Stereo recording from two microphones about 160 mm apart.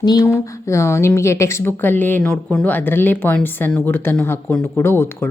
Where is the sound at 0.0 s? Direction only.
20° left (ahead or behind).